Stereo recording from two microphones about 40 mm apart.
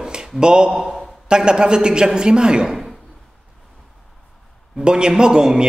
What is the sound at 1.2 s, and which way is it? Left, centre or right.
A man's voice, right.